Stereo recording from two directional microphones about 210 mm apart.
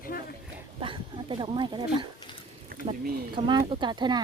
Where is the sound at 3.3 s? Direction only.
25° right (ahead or behind).